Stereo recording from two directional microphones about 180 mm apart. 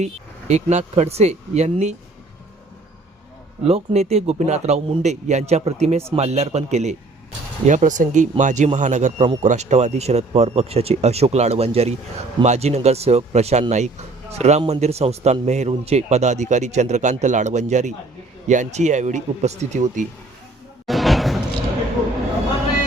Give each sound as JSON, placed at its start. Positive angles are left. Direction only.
{"t": 0.0, "sound": "a man's voice", "side_deg": -40}
{"t": 3.7, "sound": "a man's voice", "side_deg": -35}
{"t": 20.8, "sound": "a sound", "side_deg": 0}